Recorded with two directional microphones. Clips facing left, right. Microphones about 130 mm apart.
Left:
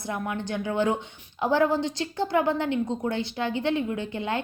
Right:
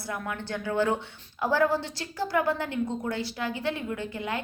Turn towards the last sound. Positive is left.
turn(degrees=25)  # may be behind; listen again after turning